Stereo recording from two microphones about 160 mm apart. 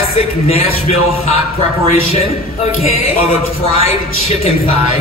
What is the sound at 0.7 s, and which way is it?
Speech, 40° left (ahead or behind).